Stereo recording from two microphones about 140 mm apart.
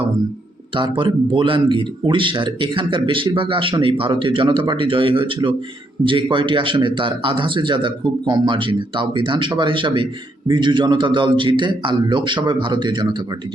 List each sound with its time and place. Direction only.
0.8 s speech: 35° right (ahead or behind)